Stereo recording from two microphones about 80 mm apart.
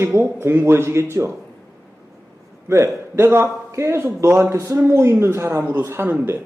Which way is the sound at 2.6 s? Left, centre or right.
Right.